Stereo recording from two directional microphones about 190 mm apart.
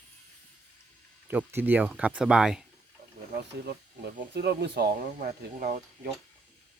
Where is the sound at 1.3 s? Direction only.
10° right (ahead or behind).